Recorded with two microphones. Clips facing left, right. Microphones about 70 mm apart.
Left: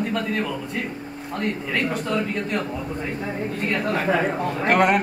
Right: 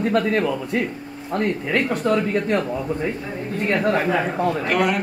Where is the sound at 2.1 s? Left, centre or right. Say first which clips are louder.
Right 8 dB; right.